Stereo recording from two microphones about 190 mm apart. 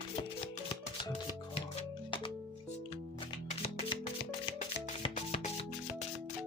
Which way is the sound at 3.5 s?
35° left (ahead or behind).